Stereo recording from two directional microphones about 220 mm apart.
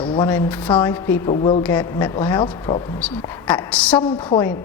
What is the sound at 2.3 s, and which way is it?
Speech, 20° left (ahead or behind).